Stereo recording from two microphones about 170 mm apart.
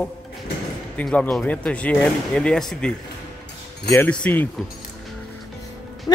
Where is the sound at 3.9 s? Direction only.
10° left (ahead or behind).